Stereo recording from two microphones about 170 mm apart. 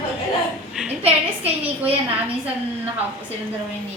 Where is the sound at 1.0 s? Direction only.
35° right (ahead or behind).